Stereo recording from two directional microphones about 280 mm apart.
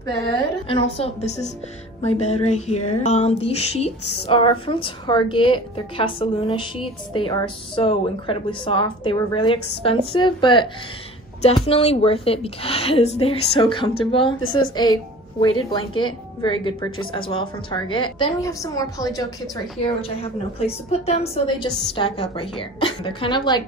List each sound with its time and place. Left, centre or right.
0.0 s a woman's voice: centre